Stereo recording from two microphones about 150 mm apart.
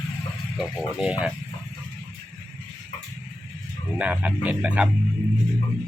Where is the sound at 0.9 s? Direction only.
5° right (ahead or behind).